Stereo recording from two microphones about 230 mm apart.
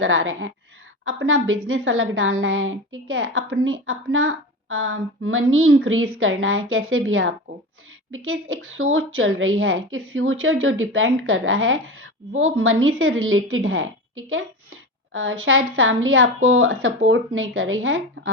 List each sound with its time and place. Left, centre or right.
0.0 s a woman's voice: right